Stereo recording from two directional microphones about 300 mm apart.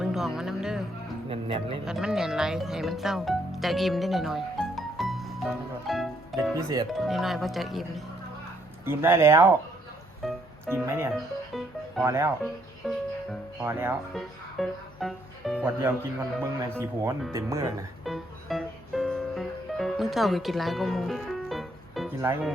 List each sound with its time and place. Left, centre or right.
0.0 s music: centre
1.3 s speech: centre
1.8 s speech: centre
5.9 s music: centre
6.9 s speech: centre
10.2 s music: centre
16.4 s speech: centre
18.0 s music: centre